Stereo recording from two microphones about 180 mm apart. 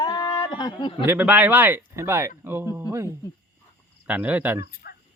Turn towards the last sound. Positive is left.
turn(degrees=60)  # may be behind; listen again after turning